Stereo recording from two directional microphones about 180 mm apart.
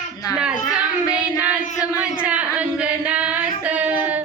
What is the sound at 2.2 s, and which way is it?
Singing, 5° right (ahead or behind).